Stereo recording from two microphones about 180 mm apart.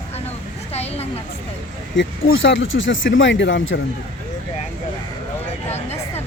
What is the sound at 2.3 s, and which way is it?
Speech, 90° left.